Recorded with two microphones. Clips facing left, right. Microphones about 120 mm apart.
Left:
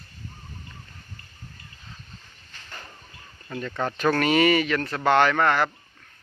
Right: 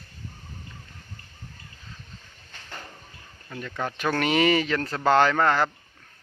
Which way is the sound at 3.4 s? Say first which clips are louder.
Left 4 dB; centre (ahead or behind).